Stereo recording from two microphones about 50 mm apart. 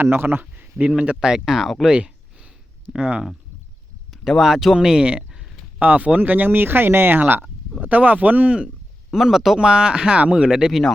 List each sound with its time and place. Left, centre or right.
0.0 s speech: right
0.5 s a sound: right
1.2 s speech: centre
2.9 s speech: centre
4.1 s speech: centre
5.8 s speech: right
9.2 s a man's voice: centre
9.6 s speech: centre
10.7 s a man's voice: centre